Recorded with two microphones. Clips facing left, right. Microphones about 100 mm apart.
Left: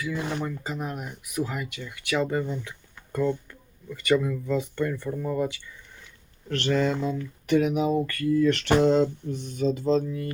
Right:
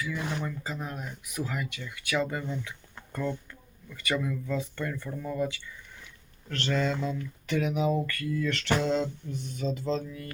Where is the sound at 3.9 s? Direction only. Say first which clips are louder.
Left 7 dB; 20° left (ahead or behind).